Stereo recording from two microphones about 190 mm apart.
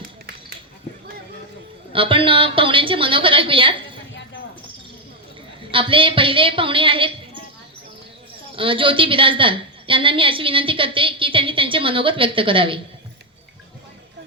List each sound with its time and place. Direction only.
1.9 s a woman's voice: 25° right (ahead or behind)
5.7 s a woman's voice: 25° right (ahead or behind)
8.5 s a woman's voice: 25° right (ahead or behind)